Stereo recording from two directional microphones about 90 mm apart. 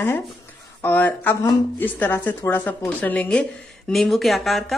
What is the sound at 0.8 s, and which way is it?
A woman's voice, 20° left (ahead or behind).